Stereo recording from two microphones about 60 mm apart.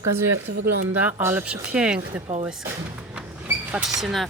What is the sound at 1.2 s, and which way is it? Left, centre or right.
Speech, right.